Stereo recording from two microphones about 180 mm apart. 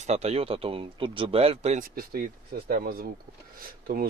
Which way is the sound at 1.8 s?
55° right (ahead or behind).